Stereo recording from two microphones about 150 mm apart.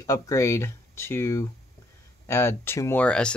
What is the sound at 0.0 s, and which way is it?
Speech, 20° left (ahead or behind).